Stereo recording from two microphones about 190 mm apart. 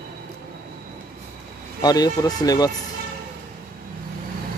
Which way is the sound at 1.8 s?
20° left (ahead or behind).